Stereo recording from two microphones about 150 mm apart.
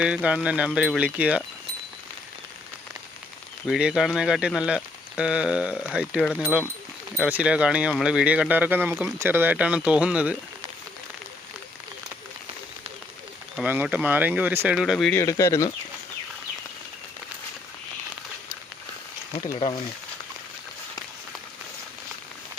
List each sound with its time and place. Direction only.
0.0 s speech: 5° right (ahead or behind)
3.7 s speech: 5° right (ahead or behind)
13.6 s speech: 10° right (ahead or behind)
14.8 s speech: centre (ahead or behind)
15.1 s speech: 20° left (ahead or behind)